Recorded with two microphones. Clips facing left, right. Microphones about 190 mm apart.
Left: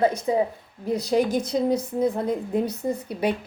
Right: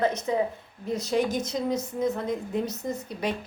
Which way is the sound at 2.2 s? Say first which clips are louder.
Left 4 dB; 10° left (ahead or behind).